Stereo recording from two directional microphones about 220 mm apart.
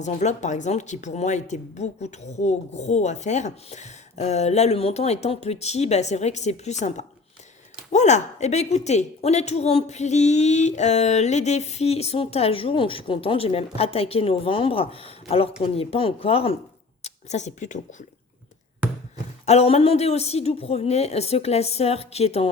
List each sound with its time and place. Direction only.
0.0 s a woman's voice: 30° left (ahead or behind)
19.5 s a woman's voice: 25° left (ahead or behind)